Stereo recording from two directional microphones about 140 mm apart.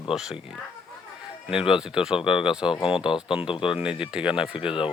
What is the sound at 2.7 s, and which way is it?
Speech, 40° left (ahead or behind).